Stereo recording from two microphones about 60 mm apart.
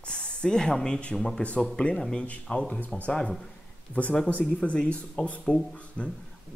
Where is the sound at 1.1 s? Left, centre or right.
Centre.